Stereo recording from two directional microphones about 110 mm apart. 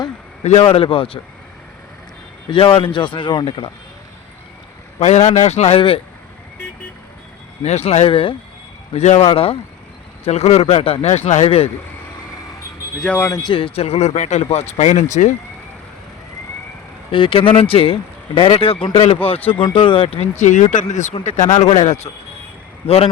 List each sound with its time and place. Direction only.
0.4 s speech: 65° left (ahead or behind)
2.5 s a man's voice: 55° left (ahead or behind)
4.9 s speech: 90° left; by 6.0 s 60° left (ahead or behind)
7.6 s speech: 85° left
8.1 s a man's voice: 55° left (ahead or behind)
8.9 s speech: 85° left
9.3 s speech: 60° left (ahead or behind)
10.2 s a man's voice: 75° left (ahead or behind)
13.0 s speech: 10° left (ahead or behind)
13.4 s a man's voice: 55° left (ahead or behind); by 15.4 s 90° left
17.1 s speech: 55° left (ahead or behind)
19.5 s a man's voice: 50° left (ahead or behind)
20.1 s speech: 90° left